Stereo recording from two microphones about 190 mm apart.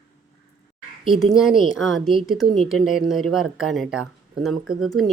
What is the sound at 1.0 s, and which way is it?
A woman's voice, centre (ahead or behind).